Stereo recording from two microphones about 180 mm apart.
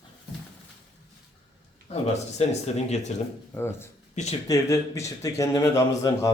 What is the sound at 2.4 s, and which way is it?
Speech, 35° left (ahead or behind).